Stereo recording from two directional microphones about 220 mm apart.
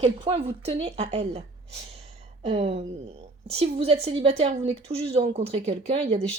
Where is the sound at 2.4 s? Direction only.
30° right (ahead or behind).